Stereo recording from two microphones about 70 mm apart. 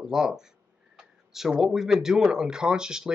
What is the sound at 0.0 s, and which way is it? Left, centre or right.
Speech, centre.